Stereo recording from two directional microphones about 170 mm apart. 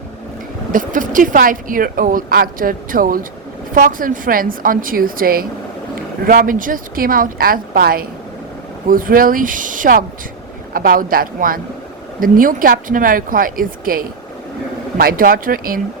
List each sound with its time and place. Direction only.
0.7 s a woman's voice: 50° right (ahead or behind)